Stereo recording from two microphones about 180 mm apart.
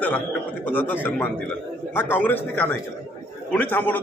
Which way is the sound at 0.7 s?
10° left (ahead or behind).